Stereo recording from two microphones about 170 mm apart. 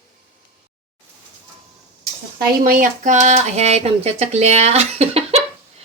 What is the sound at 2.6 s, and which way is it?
Speech, 50° right (ahead or behind).